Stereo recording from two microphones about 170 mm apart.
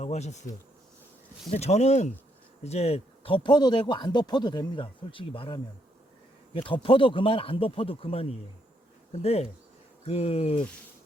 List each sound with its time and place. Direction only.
0.0 s speech: 40° left (ahead or behind)
1.5 s a man's voice: 40° left (ahead or behind)